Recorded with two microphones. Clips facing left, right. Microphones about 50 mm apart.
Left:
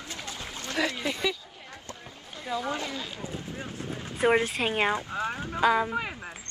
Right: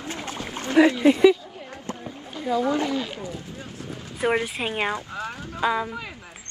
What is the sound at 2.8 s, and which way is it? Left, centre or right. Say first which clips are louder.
Speech: right 9 dB; right.